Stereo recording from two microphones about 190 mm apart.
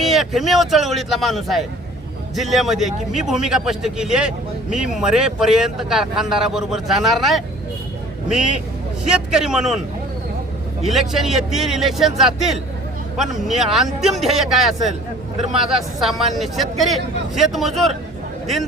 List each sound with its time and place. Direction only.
0.0 s a man's voice: centre (ahead or behind)
11.1 s a man's voice: centre (ahead or behind)